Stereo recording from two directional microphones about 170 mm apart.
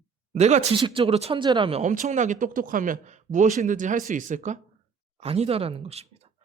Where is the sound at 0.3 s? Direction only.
40° right (ahead or behind).